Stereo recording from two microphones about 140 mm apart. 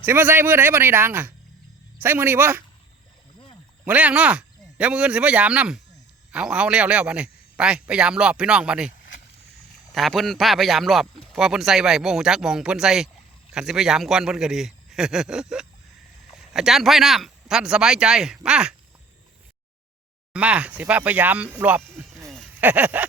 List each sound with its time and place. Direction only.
0.0 s a man's voice: 15° right (ahead or behind)
3.8 s a man's voice: 10° right (ahead or behind)
9.9 s speech: centre (ahead or behind)
20.3 s a man's voice: 10° right (ahead or behind)